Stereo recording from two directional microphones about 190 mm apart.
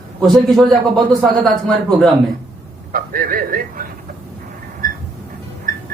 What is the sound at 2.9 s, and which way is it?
Speech, 50° right (ahead or behind).